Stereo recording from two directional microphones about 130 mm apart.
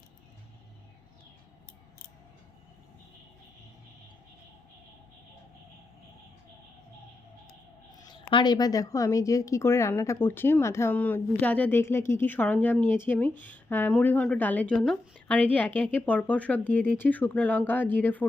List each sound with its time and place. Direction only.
8.1 s a woman's voice: 40° left (ahead or behind); by 18.3 s 15° left (ahead or behind)